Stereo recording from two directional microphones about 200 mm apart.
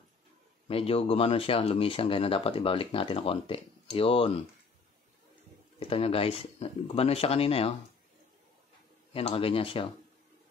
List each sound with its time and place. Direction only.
0.7 s speech: 30° left (ahead or behind)
5.8 s speech: 30° left (ahead or behind)
9.1 s speech: 30° left (ahead or behind)